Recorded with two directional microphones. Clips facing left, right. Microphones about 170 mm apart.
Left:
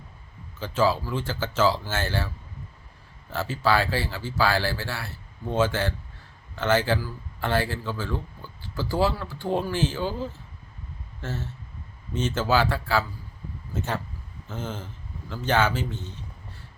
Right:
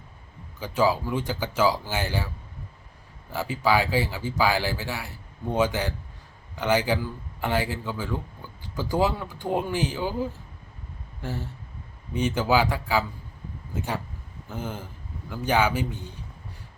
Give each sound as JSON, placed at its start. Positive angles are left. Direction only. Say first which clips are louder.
{"t": 0.6, "sound": "speech", "louder": "even", "side_deg": -15}
{"t": 3.3, "sound": "speech", "louder": "even", "side_deg": -15}